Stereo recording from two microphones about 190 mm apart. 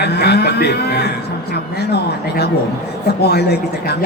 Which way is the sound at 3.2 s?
60° left (ahead or behind).